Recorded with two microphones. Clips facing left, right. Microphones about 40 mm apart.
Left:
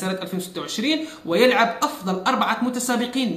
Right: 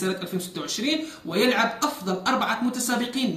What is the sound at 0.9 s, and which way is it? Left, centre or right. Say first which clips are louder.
Speech: left 5 dB; left.